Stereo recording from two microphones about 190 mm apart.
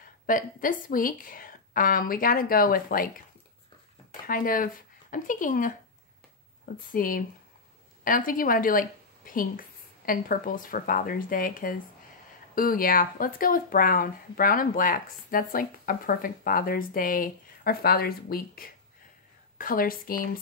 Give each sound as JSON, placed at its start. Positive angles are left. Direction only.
{"t": 0.3, "sound": "speech", "side_deg": 45}
{"t": 4.1, "sound": "a woman's voice", "side_deg": 45}